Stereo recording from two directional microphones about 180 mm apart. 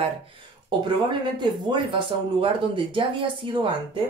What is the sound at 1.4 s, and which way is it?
Speech, 25° right (ahead or behind).